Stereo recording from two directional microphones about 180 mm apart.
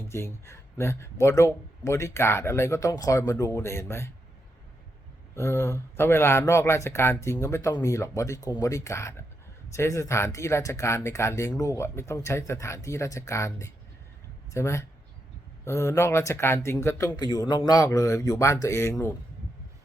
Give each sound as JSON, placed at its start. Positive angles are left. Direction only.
{"t": 0.1, "sound": "speech", "side_deg": 15}
{"t": 5.3, "sound": "speech", "side_deg": 15}